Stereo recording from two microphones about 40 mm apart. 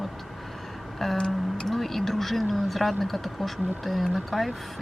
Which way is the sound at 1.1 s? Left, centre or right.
Centre.